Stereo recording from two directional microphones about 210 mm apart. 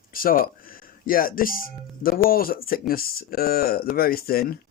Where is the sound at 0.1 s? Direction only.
45° left (ahead or behind).